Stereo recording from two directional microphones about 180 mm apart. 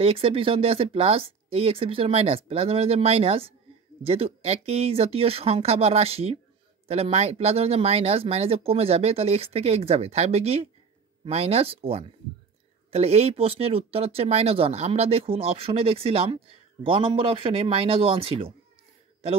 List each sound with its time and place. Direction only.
0.0 s speech: 30° right (ahead or behind)